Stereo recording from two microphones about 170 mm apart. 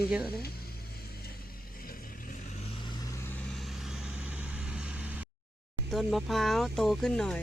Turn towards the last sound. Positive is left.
turn(degrees=5)  # may be behind; listen again after turning